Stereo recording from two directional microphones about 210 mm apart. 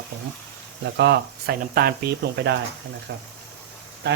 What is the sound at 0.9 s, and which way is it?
Speech, 55° right (ahead or behind).